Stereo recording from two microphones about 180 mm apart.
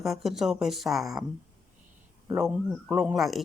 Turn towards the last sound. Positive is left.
turn(degrees=0)  # may be behind; listen again after turning